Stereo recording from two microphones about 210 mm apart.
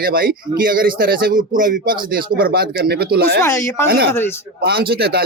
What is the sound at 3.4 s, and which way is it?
Speech, 10° left (ahead or behind).